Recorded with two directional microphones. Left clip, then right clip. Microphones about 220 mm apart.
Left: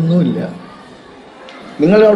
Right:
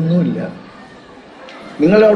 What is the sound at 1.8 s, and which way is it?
Speech, 55° left (ahead or behind).